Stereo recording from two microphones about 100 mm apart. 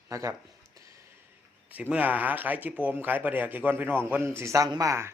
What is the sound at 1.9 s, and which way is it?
A man's voice, 15° right (ahead or behind).